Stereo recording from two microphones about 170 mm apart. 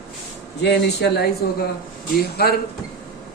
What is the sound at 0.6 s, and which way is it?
Speech, 80° left.